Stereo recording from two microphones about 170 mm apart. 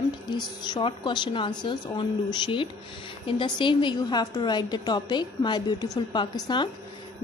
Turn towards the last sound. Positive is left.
turn(degrees=25)  # may be behind; listen again after turning